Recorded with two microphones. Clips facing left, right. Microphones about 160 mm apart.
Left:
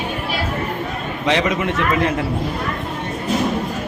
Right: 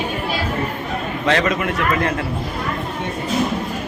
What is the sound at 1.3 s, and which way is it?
Speech, 20° left (ahead or behind).